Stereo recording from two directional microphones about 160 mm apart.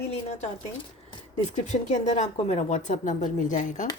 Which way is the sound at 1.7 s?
45° left (ahead or behind).